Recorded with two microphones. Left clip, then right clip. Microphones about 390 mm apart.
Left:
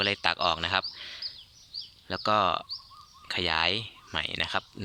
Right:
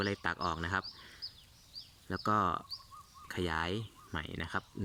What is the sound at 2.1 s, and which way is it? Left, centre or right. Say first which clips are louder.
Speech: left 7 dB; centre.